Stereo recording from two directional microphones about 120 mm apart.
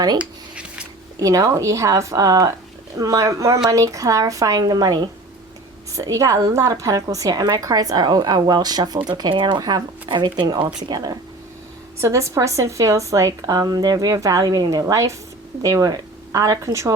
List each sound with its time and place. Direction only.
0.2 s a sound: 10° right (ahead or behind)
1.2 s a woman's voice: 30° right (ahead or behind)
6.1 s a woman's voice: 30° right (ahead or behind)
11.9 s a woman's voice: 25° right (ahead or behind)